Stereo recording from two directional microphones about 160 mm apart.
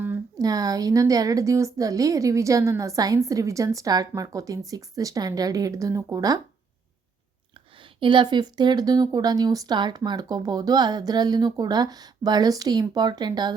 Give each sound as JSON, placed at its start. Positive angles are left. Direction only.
{"t": 0.3, "sound": "a woman's voice", "side_deg": -25}
{"t": 7.9, "sound": "a woman's voice", "side_deg": -30}